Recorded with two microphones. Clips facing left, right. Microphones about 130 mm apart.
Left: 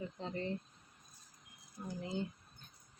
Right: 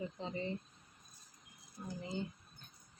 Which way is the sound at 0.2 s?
5° right (ahead or behind).